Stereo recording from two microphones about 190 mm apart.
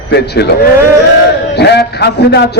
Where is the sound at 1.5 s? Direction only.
60° left (ahead or behind).